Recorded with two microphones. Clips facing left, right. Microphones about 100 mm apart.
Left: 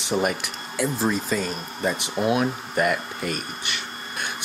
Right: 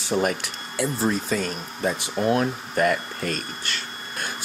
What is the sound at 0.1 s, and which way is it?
Speech, 5° left (ahead or behind).